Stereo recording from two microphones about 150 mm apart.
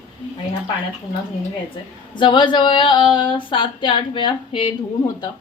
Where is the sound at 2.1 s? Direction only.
30° left (ahead or behind).